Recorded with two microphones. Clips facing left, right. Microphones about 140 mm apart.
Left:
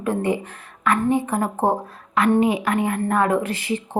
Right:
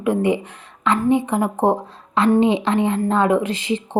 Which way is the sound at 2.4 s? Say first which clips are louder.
Right 3 dB; 25° right (ahead or behind).